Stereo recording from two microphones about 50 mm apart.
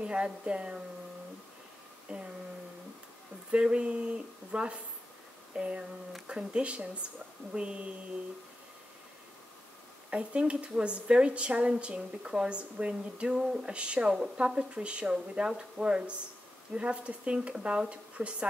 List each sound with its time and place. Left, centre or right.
0.0 s a woman's voice: right
2.1 s a woman's voice: right
3.5 s a woman's voice: right
10.1 s a woman's voice: right
13.3 s a sound: centre
13.7 s a woman's voice: right